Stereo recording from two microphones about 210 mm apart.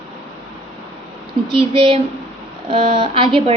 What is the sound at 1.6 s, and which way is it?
A woman's voice, 25° right (ahead or behind).